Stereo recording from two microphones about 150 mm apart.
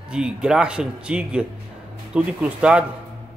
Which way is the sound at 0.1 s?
5° right (ahead or behind).